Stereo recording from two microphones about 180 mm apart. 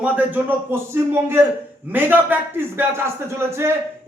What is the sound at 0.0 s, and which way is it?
Speech, 10° right (ahead or behind).